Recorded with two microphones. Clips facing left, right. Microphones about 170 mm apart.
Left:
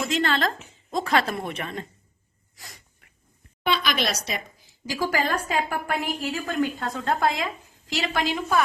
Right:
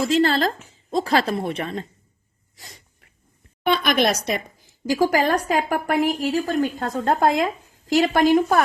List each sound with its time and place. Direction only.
0.0 s speech: 35° right (ahead or behind)
2.6 s sneeze: 25° right (ahead or behind)
3.7 s a woman's voice: 55° right (ahead or behind)
4.9 s a woman's voice: 45° right (ahead or behind)